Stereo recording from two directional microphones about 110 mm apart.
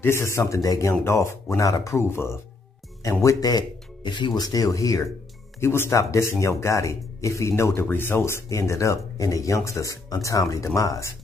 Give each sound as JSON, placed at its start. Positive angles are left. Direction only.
{"t": 0.0, "sound": "speech", "side_deg": 25}